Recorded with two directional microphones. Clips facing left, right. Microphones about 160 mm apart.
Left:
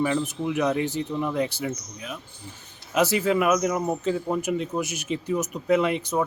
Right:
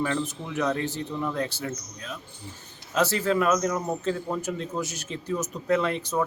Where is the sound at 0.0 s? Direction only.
15° left (ahead or behind).